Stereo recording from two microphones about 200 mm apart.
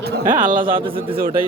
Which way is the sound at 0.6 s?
25° right (ahead or behind).